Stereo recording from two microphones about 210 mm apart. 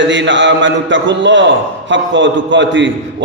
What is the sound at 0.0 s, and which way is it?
A man's voice, 60° right (ahead or behind).